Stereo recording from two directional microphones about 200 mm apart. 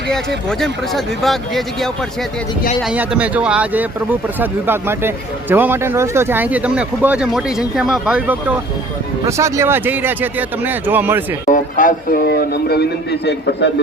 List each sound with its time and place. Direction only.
0.6 s a man's voice: centre (ahead or behind)
11.4 s a man's voice: 40° left (ahead or behind); by 13.7 s 55° left (ahead or behind)